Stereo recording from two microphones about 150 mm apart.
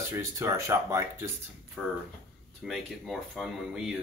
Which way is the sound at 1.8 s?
10° right (ahead or behind).